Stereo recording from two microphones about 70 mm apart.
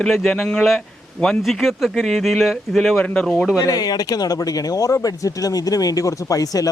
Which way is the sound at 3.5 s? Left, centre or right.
Left.